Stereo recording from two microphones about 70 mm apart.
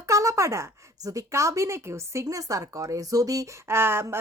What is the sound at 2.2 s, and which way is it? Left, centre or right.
Speech, right.